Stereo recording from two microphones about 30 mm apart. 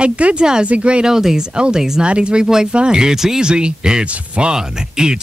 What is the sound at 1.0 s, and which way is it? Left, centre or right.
Speech, centre.